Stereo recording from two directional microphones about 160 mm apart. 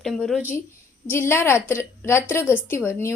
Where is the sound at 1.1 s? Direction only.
15° left (ahead or behind).